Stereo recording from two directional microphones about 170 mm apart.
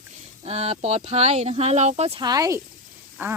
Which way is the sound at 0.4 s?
35° right (ahead or behind).